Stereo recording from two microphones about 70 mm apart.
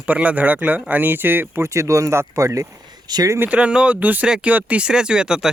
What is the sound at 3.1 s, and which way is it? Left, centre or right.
Speech, right.